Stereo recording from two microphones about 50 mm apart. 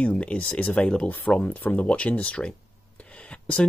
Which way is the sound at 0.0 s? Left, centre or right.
Left.